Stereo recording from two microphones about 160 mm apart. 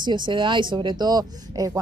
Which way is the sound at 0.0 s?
30° right (ahead or behind).